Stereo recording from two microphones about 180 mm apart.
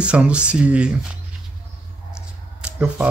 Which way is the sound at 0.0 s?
5° right (ahead or behind).